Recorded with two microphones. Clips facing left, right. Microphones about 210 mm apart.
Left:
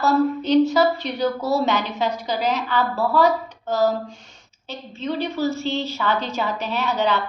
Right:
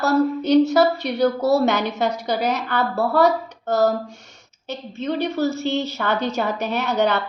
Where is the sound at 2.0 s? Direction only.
65° right (ahead or behind).